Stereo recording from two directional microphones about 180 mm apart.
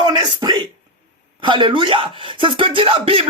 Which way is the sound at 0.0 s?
25° right (ahead or behind).